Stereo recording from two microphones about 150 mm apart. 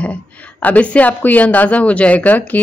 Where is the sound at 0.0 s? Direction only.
10° left (ahead or behind).